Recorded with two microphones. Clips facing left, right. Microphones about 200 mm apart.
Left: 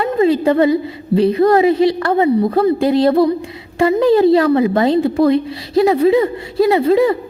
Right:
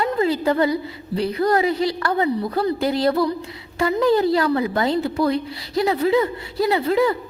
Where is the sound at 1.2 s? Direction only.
25° left (ahead or behind).